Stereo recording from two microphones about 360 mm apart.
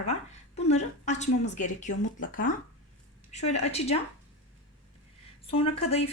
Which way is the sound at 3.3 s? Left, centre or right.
Centre.